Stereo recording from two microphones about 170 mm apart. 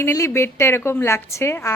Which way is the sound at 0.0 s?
15° left (ahead or behind).